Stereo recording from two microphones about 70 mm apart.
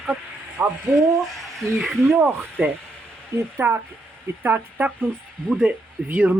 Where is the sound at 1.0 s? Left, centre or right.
Centre.